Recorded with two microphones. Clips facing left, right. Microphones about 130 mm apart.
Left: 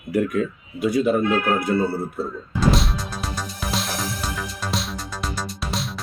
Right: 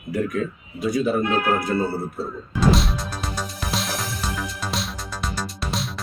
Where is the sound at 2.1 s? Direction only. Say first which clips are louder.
Left 1 dB; centre (ahead or behind).